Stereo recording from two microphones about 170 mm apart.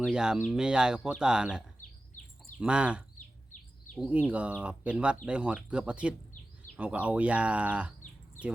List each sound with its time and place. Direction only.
0.0 s speech: 5° right (ahead or behind)
3.2 s bird: 50° left (ahead or behind)
3.9 s speech: 5° right (ahead or behind)